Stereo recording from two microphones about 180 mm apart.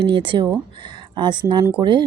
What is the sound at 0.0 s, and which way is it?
A woman's voice, 25° right (ahead or behind).